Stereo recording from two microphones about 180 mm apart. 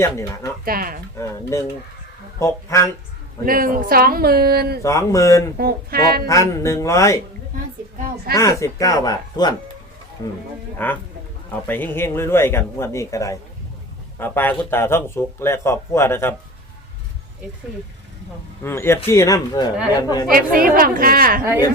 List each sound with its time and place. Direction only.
0.0 s speech: 15° left (ahead or behind)
0.6 s speech: 55° right (ahead or behind)
1.2 s speech: 15° left (ahead or behind)
3.4 s speech: 50° right (ahead or behind)
4.8 s speech: 15° left (ahead or behind)
5.5 s speech: 55° right (ahead or behind)
6.2 s speech: 15° left (ahead or behind)
8.4 s speech: 15° left (ahead or behind)
10.8 s speech: 10° left (ahead or behind)
18.6 s speech: 15° left (ahead or behind)
20.3 s a woman's voice: 50° right (ahead or behind)